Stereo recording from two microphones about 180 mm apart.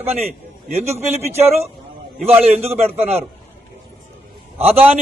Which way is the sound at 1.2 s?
35° right (ahead or behind).